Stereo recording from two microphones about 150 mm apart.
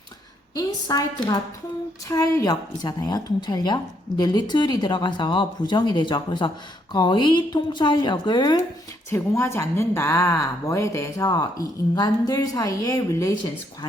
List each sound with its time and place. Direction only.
0.5 s speech: 25° left (ahead or behind)
9.0 s speech: 15° left (ahead or behind)